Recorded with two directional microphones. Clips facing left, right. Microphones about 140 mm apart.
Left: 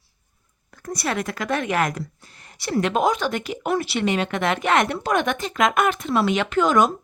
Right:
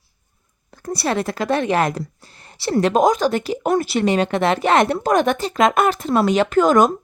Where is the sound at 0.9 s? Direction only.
30° right (ahead or behind).